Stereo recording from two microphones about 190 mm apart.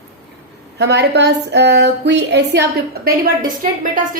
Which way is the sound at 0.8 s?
65° right (ahead or behind).